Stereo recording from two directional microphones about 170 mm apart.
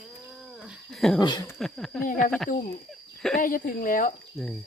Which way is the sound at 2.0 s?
50° left (ahead or behind).